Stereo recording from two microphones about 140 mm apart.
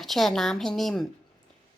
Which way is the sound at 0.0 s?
Centre (ahead or behind).